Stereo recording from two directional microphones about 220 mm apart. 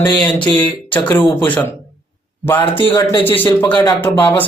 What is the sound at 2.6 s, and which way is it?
Speech, 25° left (ahead or behind).